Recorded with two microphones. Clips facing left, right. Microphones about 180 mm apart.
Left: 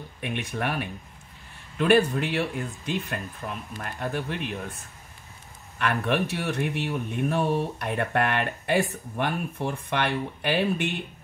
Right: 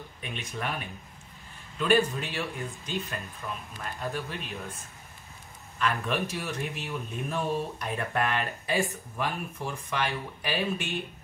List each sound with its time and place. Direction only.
0.2 s speech: 65° left (ahead or behind)
5.8 s speech: 65° left (ahead or behind)